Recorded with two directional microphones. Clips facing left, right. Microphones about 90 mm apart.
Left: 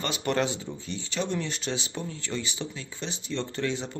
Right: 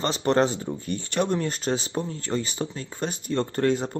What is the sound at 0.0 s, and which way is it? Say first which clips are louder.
Speech: right 6 dB; 35° right (ahead or behind).